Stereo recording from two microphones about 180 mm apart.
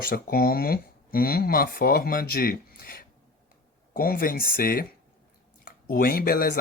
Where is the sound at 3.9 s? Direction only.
55° left (ahead or behind).